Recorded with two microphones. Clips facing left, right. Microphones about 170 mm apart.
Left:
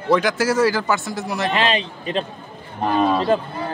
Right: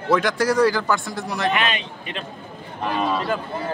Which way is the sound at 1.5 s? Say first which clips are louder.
Left 4 dB; 30° left (ahead or behind).